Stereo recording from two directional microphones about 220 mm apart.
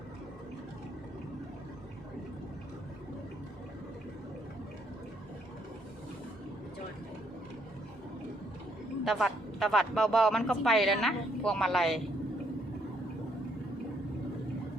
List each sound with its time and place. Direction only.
9.0 s speech: centre (ahead or behind)